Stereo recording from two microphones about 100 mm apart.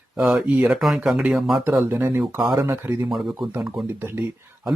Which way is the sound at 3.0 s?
5° right (ahead or behind).